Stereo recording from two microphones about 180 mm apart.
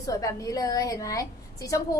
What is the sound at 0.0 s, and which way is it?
A woman's voice, 20° left (ahead or behind).